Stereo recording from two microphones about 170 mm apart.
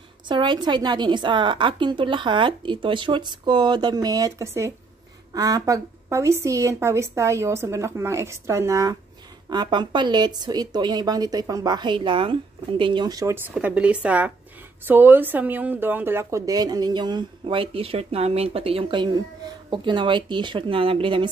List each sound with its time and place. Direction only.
0.3 s a woman's voice: 25° right (ahead or behind)